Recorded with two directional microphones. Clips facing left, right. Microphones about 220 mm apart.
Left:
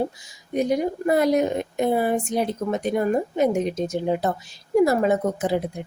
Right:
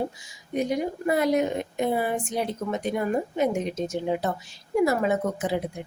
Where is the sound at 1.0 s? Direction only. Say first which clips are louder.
Left 3 dB; 40° left (ahead or behind).